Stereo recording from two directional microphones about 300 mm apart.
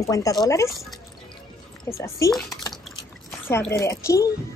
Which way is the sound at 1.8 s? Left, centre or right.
Centre.